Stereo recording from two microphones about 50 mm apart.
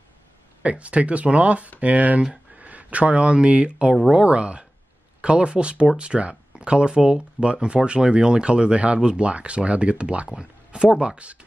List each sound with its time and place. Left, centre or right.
0.7 s speech: right